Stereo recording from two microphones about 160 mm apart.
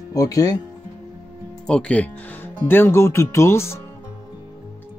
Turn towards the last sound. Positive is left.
turn(degrees=15)  # may be behind; listen again after turning